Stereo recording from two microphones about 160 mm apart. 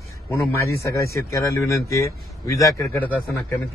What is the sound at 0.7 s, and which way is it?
A man's voice, 20° left (ahead or behind).